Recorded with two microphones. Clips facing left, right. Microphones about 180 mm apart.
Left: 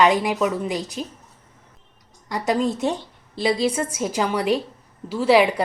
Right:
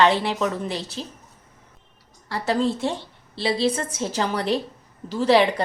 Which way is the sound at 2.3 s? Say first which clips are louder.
Left 1 dB; 15° left (ahead or behind).